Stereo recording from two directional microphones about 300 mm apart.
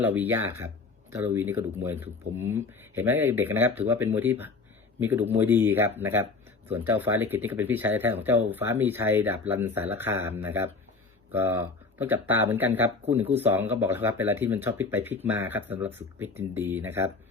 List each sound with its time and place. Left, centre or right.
0.0 s speech: centre